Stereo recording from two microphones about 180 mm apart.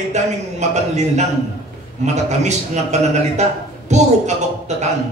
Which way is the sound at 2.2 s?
40° right (ahead or behind).